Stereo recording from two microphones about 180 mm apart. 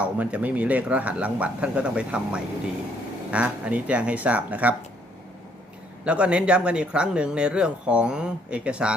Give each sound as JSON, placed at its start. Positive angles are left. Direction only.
{"t": 0.0, "sound": "speech", "side_deg": -5}
{"t": 6.1, "sound": "speech", "side_deg": -5}